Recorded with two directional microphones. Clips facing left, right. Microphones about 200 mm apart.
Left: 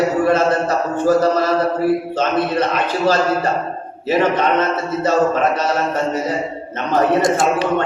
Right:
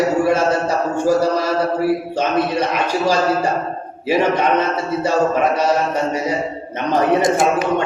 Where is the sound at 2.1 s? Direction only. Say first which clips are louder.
Even; 10° right (ahead or behind).